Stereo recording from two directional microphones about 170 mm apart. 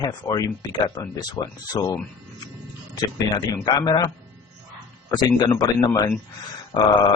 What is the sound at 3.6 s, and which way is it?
Speech, 25° left (ahead or behind).